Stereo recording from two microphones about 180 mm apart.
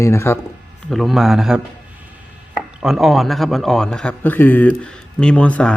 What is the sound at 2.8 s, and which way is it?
A man's voice, centre (ahead or behind).